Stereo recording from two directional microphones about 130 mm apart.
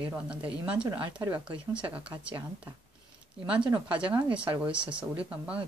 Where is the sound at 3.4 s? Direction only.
10° right (ahead or behind).